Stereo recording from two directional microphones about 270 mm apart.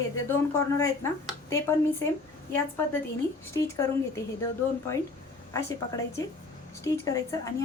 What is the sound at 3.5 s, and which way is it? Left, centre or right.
Speech, centre.